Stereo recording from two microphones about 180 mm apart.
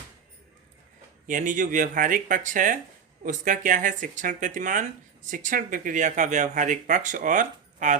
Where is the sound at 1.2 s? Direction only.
45° right (ahead or behind).